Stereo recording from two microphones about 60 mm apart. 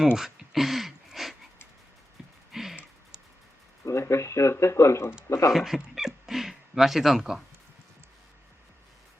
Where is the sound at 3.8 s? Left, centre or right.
Left.